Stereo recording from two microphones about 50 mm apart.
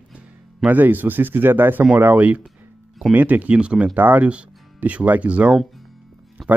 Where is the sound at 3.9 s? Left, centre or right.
Right.